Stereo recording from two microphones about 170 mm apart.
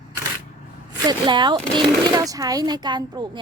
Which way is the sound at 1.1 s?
25° right (ahead or behind).